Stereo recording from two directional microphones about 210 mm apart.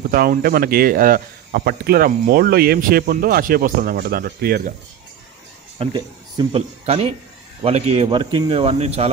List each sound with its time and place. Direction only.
0.1 s speech: 45° right (ahead or behind)
5.8 s speech: 25° right (ahead or behind)